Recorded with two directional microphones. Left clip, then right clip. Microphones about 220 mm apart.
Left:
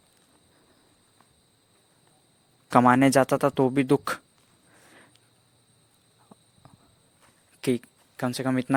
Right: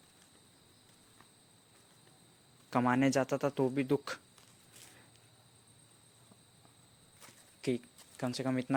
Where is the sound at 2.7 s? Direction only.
45° left (ahead or behind).